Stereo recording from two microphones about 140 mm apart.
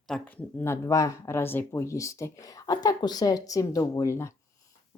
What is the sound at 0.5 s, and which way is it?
Speech, 15° left (ahead or behind).